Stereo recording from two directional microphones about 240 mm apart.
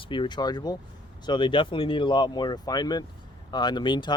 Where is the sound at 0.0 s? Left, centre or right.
Centre.